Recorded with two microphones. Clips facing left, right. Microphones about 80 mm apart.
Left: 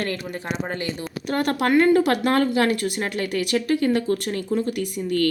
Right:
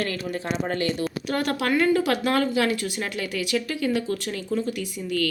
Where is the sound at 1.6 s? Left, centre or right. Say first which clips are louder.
Left 5 dB; left.